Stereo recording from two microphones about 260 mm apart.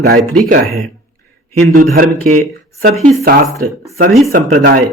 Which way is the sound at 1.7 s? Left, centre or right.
Right.